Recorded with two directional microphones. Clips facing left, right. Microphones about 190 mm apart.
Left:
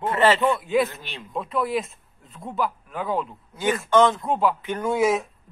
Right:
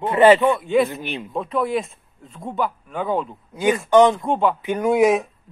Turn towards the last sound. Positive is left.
turn(degrees=-15)  # may be behind; listen again after turning